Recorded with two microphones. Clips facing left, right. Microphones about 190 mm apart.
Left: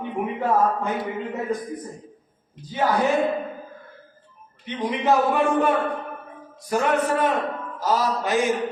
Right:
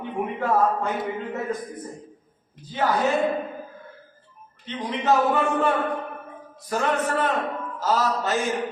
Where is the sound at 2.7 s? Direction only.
10° left (ahead or behind).